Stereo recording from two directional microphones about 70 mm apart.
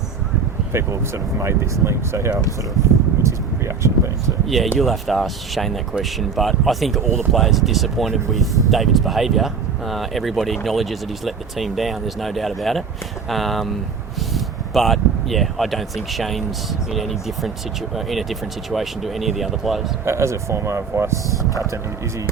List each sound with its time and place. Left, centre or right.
0.7 s speech: right
3.2 s vehicle: right
4.4 s speech: centre
20.1 s speech: right